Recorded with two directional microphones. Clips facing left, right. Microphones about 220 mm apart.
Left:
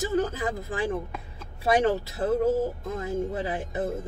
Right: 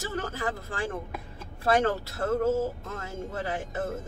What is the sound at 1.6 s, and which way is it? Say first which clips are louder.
Speech: left 2 dB; 15° left (ahead or behind).